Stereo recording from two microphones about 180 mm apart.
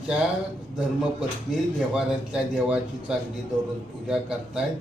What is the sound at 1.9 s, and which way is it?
Speech, 5° right (ahead or behind).